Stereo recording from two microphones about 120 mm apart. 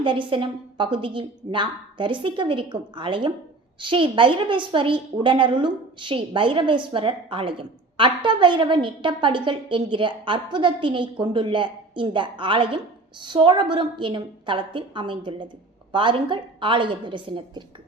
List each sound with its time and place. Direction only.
0.0 s a woman's voice: 45° right (ahead or behind)